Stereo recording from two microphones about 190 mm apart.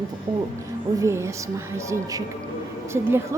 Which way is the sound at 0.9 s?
15° right (ahead or behind).